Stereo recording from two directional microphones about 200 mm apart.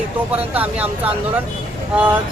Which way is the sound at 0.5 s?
5° right (ahead or behind).